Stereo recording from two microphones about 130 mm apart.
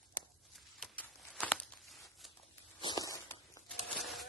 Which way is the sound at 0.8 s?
10° left (ahead or behind).